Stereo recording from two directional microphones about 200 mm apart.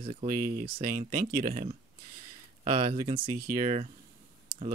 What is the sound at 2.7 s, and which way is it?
Speech, 25° right (ahead or behind).